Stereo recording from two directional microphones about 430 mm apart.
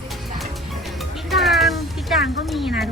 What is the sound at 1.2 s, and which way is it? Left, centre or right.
Music, centre.